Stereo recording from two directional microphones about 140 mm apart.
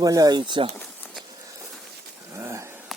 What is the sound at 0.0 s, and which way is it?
Speech, 25° right (ahead or behind).